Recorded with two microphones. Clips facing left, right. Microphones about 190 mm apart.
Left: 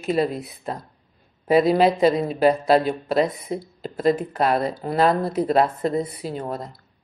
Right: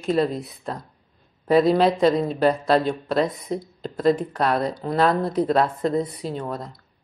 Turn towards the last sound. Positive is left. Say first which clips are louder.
# even
turn(degrees=5)  # may be behind; listen again after turning